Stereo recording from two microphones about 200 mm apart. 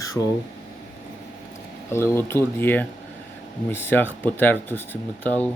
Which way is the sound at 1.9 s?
10° left (ahead or behind).